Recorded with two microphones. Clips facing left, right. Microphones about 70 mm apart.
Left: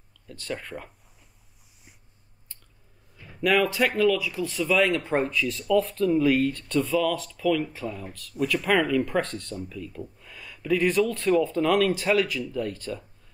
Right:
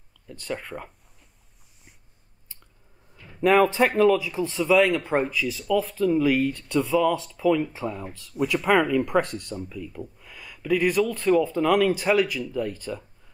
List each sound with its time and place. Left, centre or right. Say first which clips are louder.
0.3 s speech: right 2 dB; centre
3.3 s speech: right 4 dB; right
4.6 s speech: right 3 dB; centre